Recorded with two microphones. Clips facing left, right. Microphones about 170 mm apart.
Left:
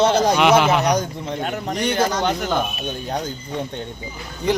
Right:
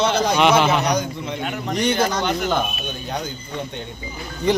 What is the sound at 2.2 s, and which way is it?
Speech, 40° left (ahead or behind).